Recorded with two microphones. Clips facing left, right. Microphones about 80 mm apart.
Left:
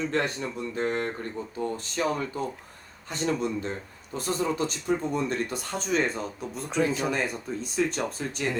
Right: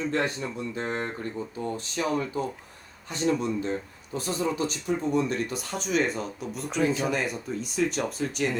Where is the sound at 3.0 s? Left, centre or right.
Left.